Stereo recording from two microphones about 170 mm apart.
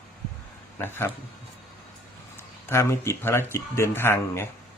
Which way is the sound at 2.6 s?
15° left (ahead or behind).